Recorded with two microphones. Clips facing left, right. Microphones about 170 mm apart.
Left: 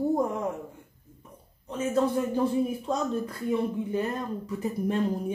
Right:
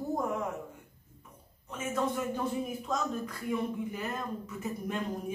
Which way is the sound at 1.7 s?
30° left (ahead or behind).